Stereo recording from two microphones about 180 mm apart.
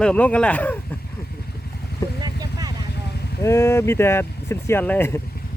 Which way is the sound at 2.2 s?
20° right (ahead or behind).